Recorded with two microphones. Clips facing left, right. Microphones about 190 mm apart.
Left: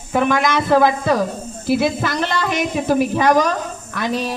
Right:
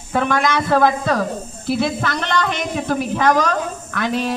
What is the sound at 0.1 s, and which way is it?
A woman's voice, 10° left (ahead or behind).